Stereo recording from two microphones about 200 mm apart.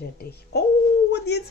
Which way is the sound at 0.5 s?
55° left (ahead or behind).